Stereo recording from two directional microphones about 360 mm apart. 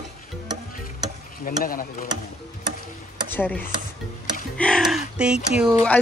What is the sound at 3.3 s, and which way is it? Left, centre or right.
A woman's voice, centre.